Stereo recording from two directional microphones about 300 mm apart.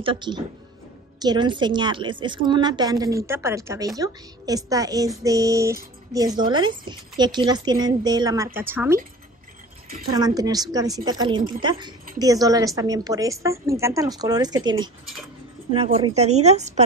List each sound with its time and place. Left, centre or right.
0.0 s speech: centre
10.0 s speech: centre